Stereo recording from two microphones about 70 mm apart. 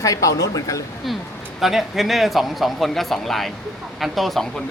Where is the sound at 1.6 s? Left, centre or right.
Centre.